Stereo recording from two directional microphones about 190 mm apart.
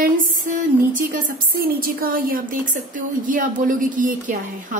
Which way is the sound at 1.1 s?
50° right (ahead or behind).